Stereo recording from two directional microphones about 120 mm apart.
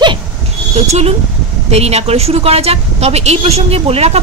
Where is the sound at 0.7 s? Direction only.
65° right (ahead or behind).